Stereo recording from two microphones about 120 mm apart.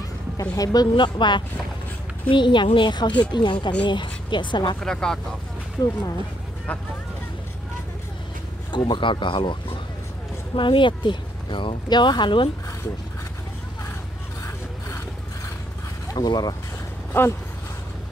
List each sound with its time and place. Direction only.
0.4 s a woman's voice: 30° left (ahead or behind)
4.7 s speech: 5° left (ahead or behind)
5.8 s a woman's voice: 30° left (ahead or behind)
8.7 s speech: 40° left (ahead or behind)
16.1 s speech: 35° left (ahead or behind)
17.1 s speech: 15° left (ahead or behind)